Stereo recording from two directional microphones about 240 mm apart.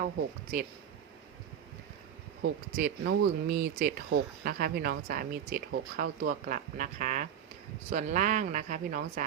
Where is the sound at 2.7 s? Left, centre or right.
Right.